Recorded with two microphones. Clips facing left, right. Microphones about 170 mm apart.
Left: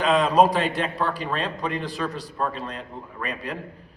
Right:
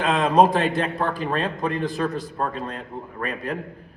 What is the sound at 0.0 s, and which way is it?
A man's voice, 50° right (ahead or behind).